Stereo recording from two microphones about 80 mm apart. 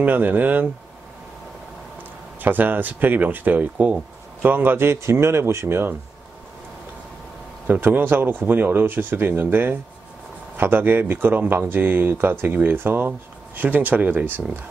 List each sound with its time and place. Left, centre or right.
0.0 s speech: right
2.4 s speech: right
7.6 s speech: right